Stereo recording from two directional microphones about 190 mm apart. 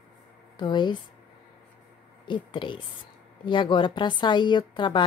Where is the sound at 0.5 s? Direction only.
25° left (ahead or behind).